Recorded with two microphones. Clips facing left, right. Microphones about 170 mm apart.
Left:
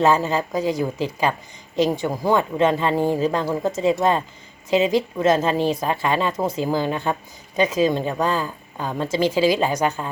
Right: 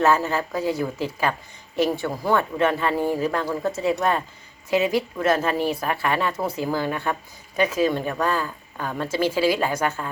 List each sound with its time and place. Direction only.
0.0 s a woman's voice: 15° left (ahead or behind)